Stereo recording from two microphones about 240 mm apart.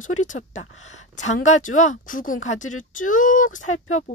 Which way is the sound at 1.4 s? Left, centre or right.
Left.